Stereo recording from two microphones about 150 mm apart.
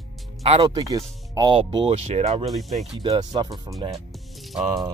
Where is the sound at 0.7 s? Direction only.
25° right (ahead or behind).